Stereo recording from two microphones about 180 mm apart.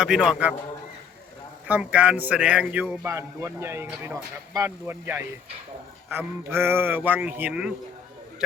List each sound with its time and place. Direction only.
0.0 s a man's voice: 5° right (ahead or behind)
1.6 s speech: 10° right (ahead or behind)